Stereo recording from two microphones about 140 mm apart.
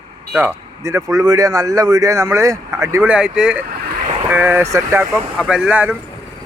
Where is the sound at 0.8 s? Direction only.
25° right (ahead or behind).